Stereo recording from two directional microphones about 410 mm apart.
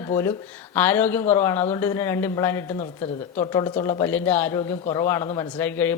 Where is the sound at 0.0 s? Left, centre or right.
Centre.